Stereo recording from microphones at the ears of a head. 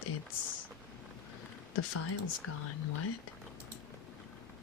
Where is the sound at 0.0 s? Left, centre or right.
Left.